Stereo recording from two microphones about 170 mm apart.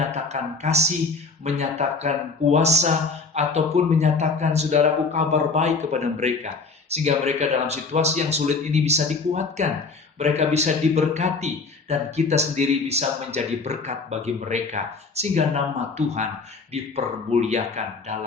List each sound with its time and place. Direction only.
0.1 s a man's voice: 40° right (ahead or behind)